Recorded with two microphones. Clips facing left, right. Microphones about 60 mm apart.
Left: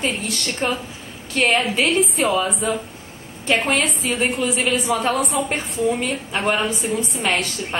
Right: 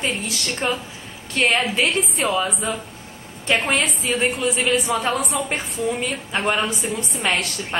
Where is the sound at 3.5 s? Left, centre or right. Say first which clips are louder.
Left 1 dB; centre.